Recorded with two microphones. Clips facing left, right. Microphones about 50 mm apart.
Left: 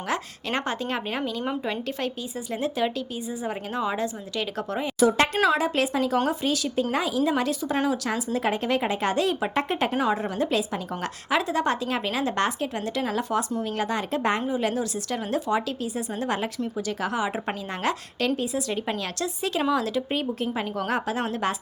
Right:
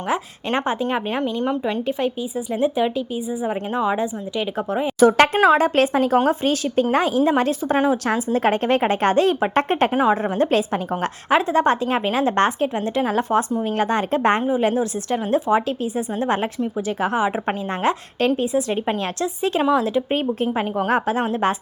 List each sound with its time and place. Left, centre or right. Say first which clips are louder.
0.1 s a woman's voice: right 5 dB; right
1.4 s speech: right 6 dB; centre
1.9 s a woman's voice: right 7 dB; centre
4.9 s speech: right 7 dB; right
9.9 s a woman's voice: right 6 dB; centre
10.3 s speech: right 6 dB; right
14.4 s speech: right 6 dB; right